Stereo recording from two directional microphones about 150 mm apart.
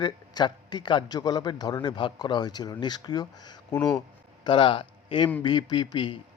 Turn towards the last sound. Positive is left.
turn(degrees=30)  # may be behind; listen again after turning